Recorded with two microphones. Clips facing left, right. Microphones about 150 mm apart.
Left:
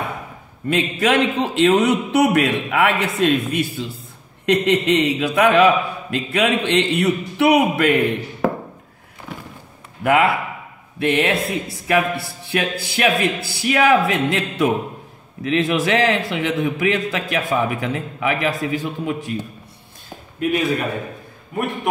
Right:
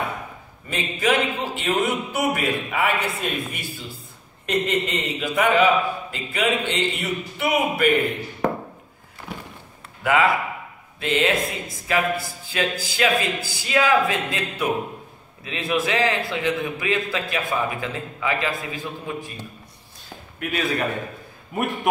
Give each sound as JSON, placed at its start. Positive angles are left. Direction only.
{"t": 0.7, "sound": "a man's voice", "side_deg": 70}
{"t": 8.4, "sound": "a sound", "side_deg": 5}
{"t": 10.0, "sound": "a man's voice", "side_deg": 55}